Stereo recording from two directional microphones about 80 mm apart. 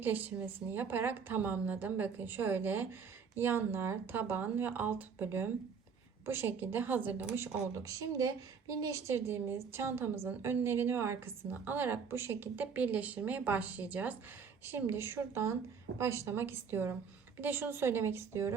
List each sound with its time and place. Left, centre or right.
0.0 s a woman's voice: right
7.7 s a woman's voice: right